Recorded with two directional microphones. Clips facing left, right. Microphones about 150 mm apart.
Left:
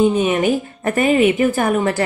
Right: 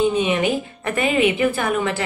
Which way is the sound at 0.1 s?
40° left (ahead or behind).